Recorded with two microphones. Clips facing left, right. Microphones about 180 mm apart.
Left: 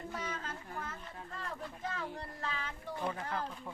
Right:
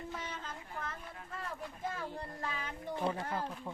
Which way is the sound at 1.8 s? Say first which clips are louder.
Right 2 dB; 10° right (ahead or behind).